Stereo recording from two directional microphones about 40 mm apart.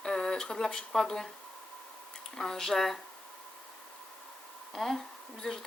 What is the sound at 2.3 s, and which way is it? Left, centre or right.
Speech, centre.